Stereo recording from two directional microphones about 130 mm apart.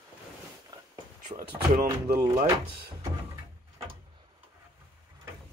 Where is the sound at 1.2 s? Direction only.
90° right.